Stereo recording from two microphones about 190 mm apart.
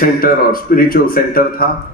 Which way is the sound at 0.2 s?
50° left (ahead or behind).